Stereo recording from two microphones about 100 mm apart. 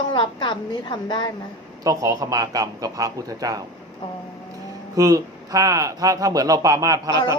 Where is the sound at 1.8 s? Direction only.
35° right (ahead or behind).